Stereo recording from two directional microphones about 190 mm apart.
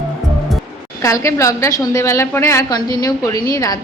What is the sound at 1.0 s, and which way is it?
A woman's voice, 15° left (ahead or behind).